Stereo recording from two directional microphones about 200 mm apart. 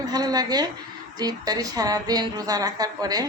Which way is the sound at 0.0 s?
20° right (ahead or behind).